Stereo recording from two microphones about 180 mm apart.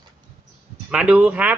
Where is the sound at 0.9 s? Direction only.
5° right (ahead or behind).